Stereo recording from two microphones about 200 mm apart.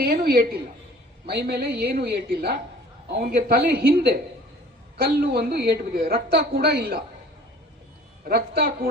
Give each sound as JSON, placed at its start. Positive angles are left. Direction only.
{"t": 0.0, "sound": "a woman's voice", "side_deg": -50}
{"t": 8.3, "sound": "a woman's voice", "side_deg": -50}